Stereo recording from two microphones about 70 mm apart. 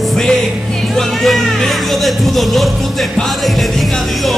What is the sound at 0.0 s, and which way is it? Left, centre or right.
Music, centre.